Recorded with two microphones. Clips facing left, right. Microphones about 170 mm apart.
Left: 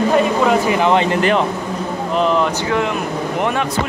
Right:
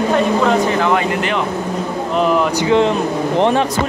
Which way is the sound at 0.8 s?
20° left (ahead or behind).